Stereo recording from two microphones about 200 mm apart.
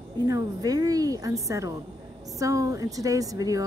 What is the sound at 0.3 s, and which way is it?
Speech, 20° right (ahead or behind).